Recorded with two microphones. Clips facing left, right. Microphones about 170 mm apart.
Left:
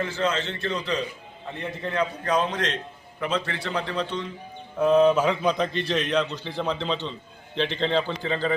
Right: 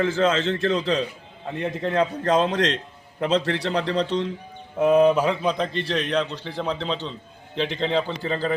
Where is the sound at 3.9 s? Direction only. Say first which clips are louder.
Right 5 dB; 35° right (ahead or behind).